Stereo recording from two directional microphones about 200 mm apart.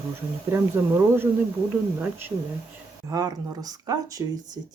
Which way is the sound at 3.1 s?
20° right (ahead or behind).